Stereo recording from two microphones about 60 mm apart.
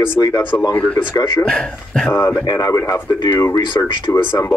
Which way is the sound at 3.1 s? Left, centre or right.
Left.